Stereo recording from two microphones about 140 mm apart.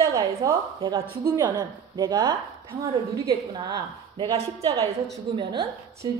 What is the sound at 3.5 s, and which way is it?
A woman's voice, 35° right (ahead or behind).